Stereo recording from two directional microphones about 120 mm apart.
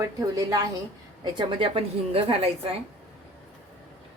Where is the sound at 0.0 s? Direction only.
30° right (ahead or behind).